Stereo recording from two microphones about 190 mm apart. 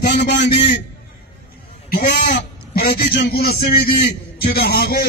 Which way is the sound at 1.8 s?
50° left (ahead or behind).